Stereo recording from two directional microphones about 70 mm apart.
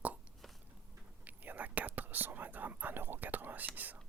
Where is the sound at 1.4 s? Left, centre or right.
Right.